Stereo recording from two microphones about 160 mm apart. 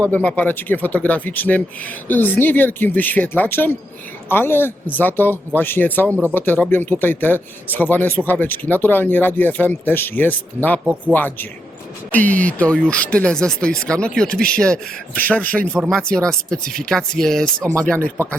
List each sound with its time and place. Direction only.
0.0 s speech: 10° left (ahead or behind)
17.6 s speech: 20° right (ahead or behind)